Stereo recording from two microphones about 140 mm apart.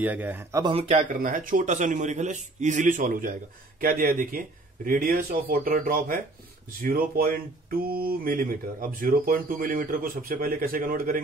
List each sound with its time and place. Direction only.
0.0 s speech: 10° right (ahead or behind)
0.7 s a man's voice: 50° right (ahead or behind); by 3.3 s 75° right (ahead or behind)
3.8 s speech: 90° right